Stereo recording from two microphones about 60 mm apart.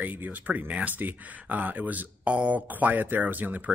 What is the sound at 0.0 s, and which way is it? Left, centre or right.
Speech, right.